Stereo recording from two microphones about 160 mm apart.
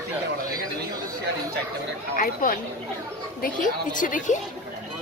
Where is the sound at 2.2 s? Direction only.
60° left (ahead or behind).